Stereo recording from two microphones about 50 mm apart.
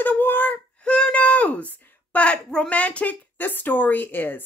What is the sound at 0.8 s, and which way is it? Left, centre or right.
Speech, left.